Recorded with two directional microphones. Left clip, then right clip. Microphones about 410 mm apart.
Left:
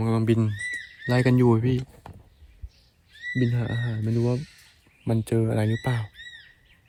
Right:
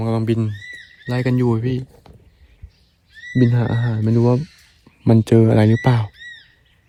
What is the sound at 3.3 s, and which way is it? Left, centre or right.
Speech, right.